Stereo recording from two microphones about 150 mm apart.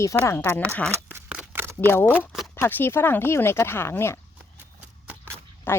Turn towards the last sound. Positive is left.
turn(degrees=15)  # may be behind; listen again after turning